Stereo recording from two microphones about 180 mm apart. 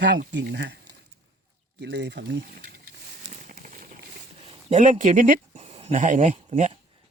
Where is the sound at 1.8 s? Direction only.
75° right (ahead or behind); by 4.0 s 50° right (ahead or behind).